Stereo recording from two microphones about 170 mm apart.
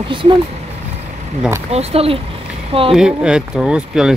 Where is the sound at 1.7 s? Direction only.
35° right (ahead or behind).